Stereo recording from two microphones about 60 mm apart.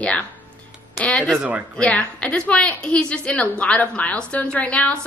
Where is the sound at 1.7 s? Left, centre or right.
Centre.